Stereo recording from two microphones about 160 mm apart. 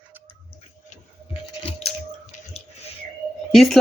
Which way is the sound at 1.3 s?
40° left (ahead or behind).